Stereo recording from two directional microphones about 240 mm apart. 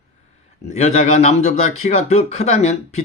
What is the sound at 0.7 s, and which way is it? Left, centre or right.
Speech, left.